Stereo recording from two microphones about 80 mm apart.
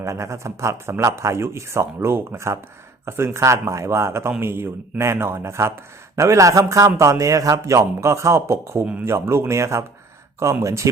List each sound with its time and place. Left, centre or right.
0.0 s a man's voice: right